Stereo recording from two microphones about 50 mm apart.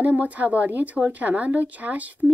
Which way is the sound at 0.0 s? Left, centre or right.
Right.